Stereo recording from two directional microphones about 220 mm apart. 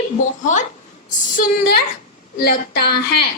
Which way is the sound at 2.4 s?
45° left (ahead or behind).